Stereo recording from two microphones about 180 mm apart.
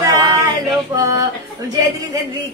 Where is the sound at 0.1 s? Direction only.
20° right (ahead or behind).